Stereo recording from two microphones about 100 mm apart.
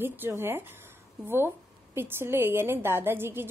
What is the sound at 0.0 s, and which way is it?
Speech, 20° right (ahead or behind).